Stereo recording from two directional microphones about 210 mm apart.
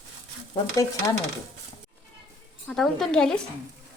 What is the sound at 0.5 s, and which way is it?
Speech, 15° left (ahead or behind).